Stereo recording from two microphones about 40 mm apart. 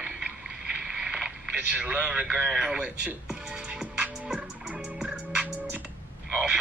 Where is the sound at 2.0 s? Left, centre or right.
Right.